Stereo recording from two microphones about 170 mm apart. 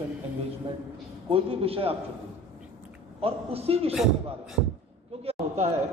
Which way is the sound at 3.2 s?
35° right (ahead or behind).